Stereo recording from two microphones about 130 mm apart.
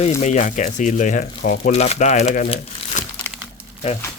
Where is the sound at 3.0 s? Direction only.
70° left (ahead or behind).